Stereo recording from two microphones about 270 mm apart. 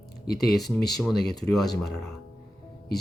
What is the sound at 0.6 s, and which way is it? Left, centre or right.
Speech, left.